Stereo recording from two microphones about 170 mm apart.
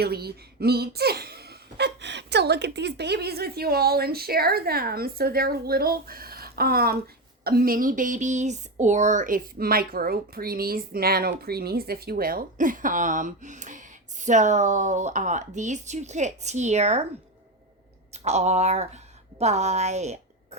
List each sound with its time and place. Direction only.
0.0 s a woman's voice: 70° right (ahead or behind); by 17.1 s 40° right (ahead or behind)
18.1 s a woman's voice: 40° right (ahead or behind)